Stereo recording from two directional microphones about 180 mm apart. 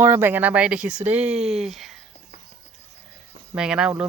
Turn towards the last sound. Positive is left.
turn(degrees=-5)  # may be behind; listen again after turning